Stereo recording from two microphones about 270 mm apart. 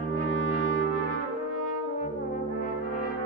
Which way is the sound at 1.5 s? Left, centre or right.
Left.